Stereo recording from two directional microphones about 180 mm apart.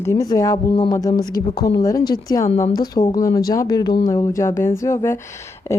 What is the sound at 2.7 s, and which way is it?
Speech, 20° left (ahead or behind).